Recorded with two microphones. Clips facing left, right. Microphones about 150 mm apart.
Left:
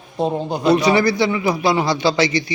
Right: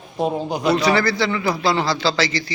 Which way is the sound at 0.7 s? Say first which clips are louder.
Left 3 dB; 20° left (ahead or behind).